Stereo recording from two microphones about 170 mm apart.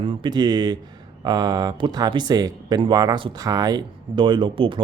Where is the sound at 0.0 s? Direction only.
30° right (ahead or behind).